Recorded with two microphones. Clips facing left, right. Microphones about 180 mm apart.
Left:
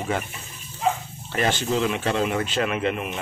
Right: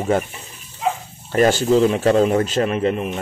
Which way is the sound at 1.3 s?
40° right (ahead or behind).